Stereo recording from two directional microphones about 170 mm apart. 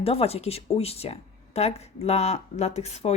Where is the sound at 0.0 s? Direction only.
35° left (ahead or behind).